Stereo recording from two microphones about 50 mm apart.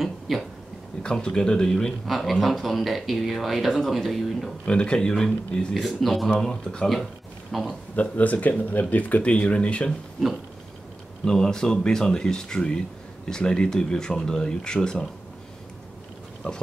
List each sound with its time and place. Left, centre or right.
0.0 s speech: centre
1.0 s speech: centre
2.0 s speech: centre
4.6 s speech: centre
5.8 s speech: centre
6.4 s speech: centre
7.5 s speech: centre
7.9 s speech: left
11.2 s speech: centre
16.4 s speech: left